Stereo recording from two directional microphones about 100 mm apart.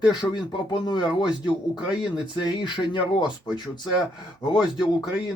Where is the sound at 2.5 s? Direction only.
50° left (ahead or behind).